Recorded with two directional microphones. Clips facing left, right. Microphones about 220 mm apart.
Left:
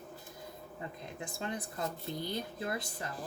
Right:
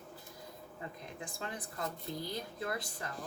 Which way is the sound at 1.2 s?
25° left (ahead or behind).